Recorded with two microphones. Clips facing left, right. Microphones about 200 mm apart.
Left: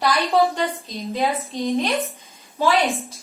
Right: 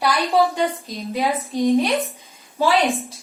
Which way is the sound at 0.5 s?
15° right (ahead or behind).